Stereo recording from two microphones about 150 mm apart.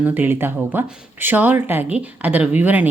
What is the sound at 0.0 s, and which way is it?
Speech, 10° right (ahead or behind).